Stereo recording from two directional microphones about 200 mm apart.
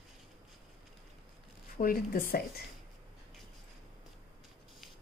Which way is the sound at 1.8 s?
45° left (ahead or behind).